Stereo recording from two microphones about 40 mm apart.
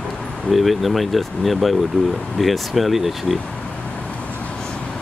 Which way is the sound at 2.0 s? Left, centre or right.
Left.